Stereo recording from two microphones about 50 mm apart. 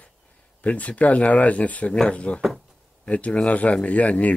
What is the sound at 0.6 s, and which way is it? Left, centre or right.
Speech, left.